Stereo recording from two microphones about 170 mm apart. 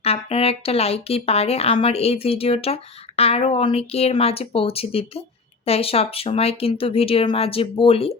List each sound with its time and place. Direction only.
0.0 s speech: 35° left (ahead or behind)